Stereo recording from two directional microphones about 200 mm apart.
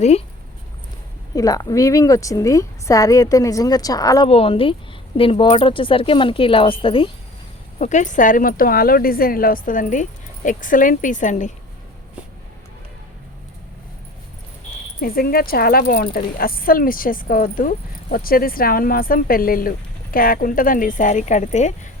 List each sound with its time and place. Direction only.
1.4 s a woman's voice: 15° left (ahead or behind)
4.3 s speech: 30° left (ahead or behind)
7.8 s a woman's voice: 35° left (ahead or behind)
15.0 s a woman's voice: 50° left (ahead or behind)